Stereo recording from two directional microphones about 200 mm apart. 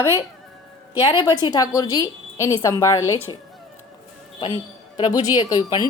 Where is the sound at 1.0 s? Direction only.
20° left (ahead or behind).